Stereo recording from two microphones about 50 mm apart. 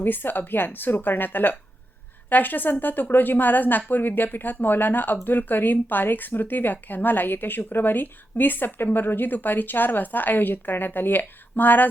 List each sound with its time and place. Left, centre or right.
0.0 s speech: left